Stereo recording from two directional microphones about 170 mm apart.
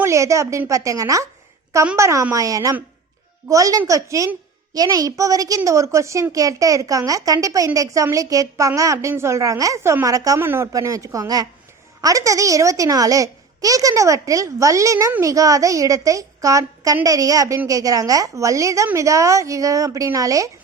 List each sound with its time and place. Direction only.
0.0 s a woman's voice: 15° right (ahead or behind)